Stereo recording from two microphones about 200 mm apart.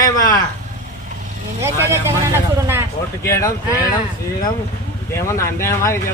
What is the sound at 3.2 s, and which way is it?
Speech, 15° left (ahead or behind).